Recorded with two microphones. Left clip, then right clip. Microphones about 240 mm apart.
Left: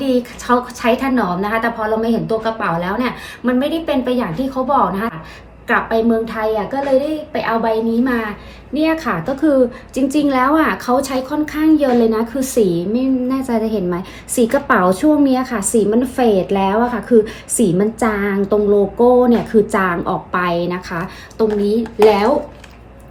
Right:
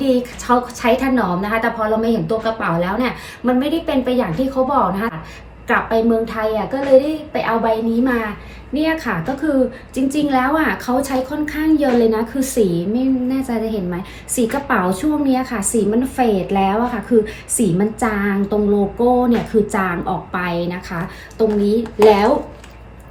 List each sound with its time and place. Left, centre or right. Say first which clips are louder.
0.0 s a woman's voice: even; centre